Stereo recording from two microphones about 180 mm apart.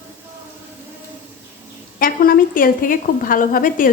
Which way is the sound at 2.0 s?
55° left (ahead or behind).